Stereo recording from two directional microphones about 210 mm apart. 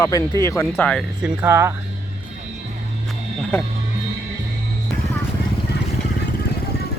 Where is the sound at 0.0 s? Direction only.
15° left (ahead or behind).